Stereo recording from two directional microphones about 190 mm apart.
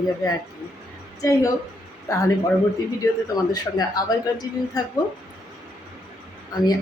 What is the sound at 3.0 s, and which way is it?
Speech, 20° left (ahead or behind).